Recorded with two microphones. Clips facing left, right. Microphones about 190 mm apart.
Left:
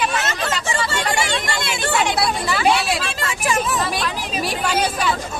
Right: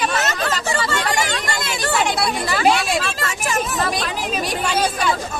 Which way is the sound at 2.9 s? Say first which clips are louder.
Right 2 dB; 40° right (ahead or behind).